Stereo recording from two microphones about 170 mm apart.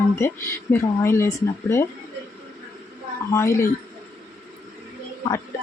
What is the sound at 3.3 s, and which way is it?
Speech, 15° left (ahead or behind).